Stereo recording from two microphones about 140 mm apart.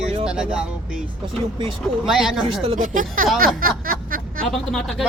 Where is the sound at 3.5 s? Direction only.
90° right.